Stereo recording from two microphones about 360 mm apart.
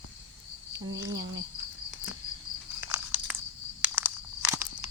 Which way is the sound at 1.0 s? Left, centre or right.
Right.